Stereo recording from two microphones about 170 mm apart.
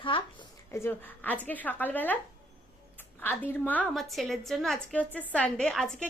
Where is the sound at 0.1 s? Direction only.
30° left (ahead or behind).